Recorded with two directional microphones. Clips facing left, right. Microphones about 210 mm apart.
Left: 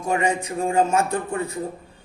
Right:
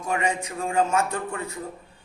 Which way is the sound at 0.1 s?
30° left (ahead or behind).